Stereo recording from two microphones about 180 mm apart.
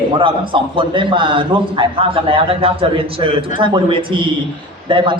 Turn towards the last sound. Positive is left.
turn(degrees=-30)  # may be behind; listen again after turning